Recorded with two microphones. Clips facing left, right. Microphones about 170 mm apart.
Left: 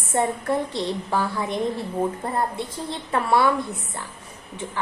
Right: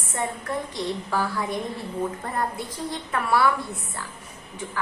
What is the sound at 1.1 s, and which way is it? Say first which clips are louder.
A woman's voice: left 1 dB; 25° left (ahead or behind).